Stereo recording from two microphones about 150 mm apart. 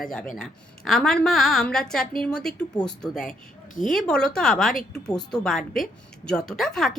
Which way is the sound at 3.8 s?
Centre (ahead or behind).